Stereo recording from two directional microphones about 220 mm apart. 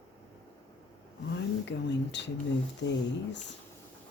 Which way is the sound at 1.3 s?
55° left (ahead or behind).